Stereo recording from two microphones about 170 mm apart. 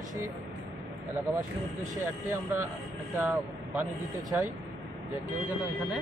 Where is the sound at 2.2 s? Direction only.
15° right (ahead or behind).